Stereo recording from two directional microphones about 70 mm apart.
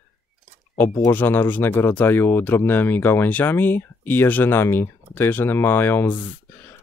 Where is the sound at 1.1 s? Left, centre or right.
Left.